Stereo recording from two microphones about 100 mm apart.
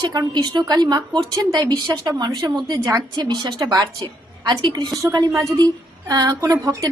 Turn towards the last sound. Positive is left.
turn(degrees=-30)  # may be behind; listen again after turning